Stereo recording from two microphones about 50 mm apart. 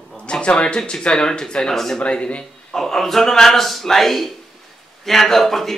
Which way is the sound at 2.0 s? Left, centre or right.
Left.